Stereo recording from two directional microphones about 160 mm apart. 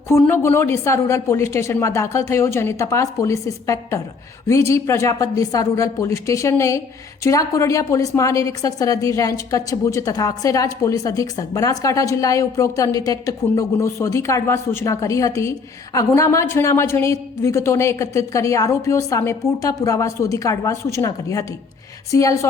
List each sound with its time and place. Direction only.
0.1 s a woman's voice: 15° left (ahead or behind)